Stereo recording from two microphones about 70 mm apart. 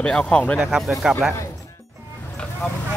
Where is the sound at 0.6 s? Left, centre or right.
Centre.